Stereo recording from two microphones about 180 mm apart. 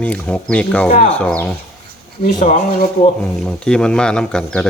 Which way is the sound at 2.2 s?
40° left (ahead or behind).